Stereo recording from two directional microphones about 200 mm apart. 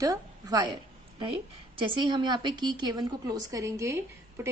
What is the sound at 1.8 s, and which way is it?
A woman's voice, 25° right (ahead or behind).